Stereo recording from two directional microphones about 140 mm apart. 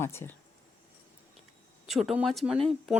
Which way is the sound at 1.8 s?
Centre (ahead or behind).